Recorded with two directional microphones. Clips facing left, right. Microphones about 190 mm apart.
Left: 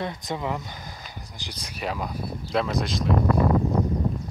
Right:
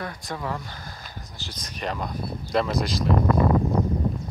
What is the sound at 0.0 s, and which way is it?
Speech, 20° left (ahead or behind).